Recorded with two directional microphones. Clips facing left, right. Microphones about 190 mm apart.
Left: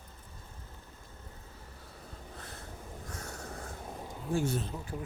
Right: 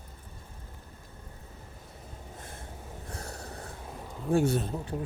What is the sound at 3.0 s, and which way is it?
Train, 35° right (ahead or behind).